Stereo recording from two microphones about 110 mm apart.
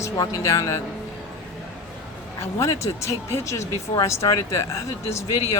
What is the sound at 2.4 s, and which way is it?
Speech, 30° left (ahead or behind).